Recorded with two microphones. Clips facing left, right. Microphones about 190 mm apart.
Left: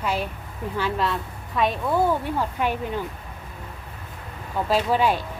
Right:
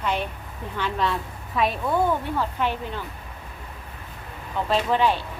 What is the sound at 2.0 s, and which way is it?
Speech, 10° left (ahead or behind).